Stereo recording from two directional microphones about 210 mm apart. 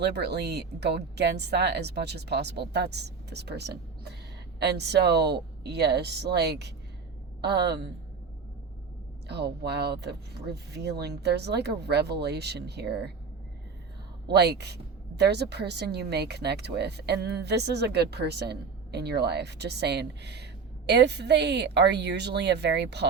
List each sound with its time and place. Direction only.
0.0 s a woman's voice: 50° right (ahead or behind)
9.2 s a woman's voice: 50° right (ahead or behind)
14.3 s a woman's voice: 50° right (ahead or behind)